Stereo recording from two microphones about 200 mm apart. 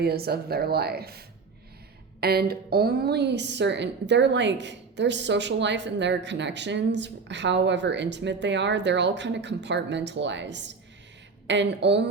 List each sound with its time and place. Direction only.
0.0 s speech: 50° right (ahead or behind)
2.2 s a woman's voice: 50° right (ahead or behind)